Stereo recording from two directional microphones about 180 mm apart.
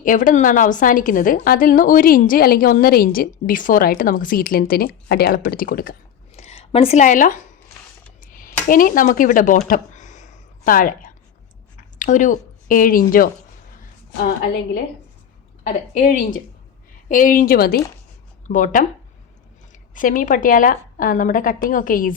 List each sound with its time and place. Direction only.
0.0 s a woman's voice: 50° left (ahead or behind)
6.3 s speech: 35° left (ahead or behind)
8.2 s a sound: 50° left (ahead or behind)
11.9 s a woman's voice: 45° left (ahead or behind)
16.0 s a woman's voice: 50° left (ahead or behind)
18.4 s a woman's voice: 45° left (ahead or behind)
19.9 s a woman's voice: 45° left (ahead or behind)